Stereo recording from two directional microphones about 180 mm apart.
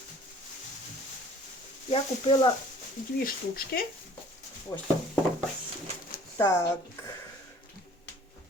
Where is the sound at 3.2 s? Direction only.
55° left (ahead or behind).